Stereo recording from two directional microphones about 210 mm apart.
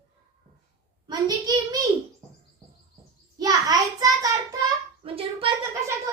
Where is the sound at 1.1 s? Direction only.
20° right (ahead or behind).